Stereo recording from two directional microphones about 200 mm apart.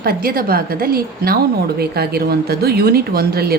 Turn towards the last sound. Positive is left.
turn(degrees=-50)  # may be behind; listen again after turning